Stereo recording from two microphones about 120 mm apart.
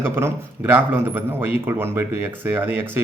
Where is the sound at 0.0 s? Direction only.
20° right (ahead or behind).